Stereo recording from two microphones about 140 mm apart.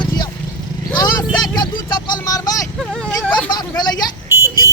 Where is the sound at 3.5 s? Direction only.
30° left (ahead or behind).